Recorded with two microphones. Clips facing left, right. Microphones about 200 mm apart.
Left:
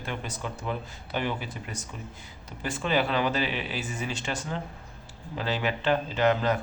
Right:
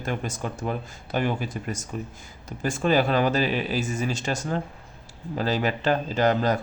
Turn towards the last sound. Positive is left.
turn(degrees=-40)  # may be behind; listen again after turning